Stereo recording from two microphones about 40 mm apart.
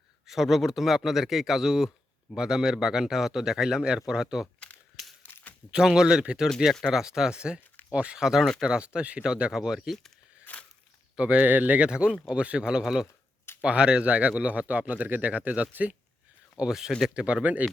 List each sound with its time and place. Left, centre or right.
0.3 s speech: centre
5.0 s a sound: centre
5.7 s speech: centre
8.2 s speech: centre
8.6 s speech: right
10.5 s a sound: left
11.2 s speech: right
11.4 s speech: right
11.8 s speech: right
13.6 s speech: right
16.6 s speech: centre
17.2 s speech: right